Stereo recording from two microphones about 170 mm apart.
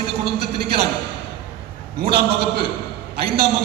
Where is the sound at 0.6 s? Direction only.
35° right (ahead or behind).